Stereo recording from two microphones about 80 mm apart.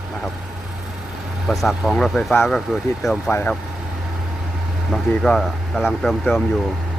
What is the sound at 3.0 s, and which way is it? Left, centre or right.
Speech, left.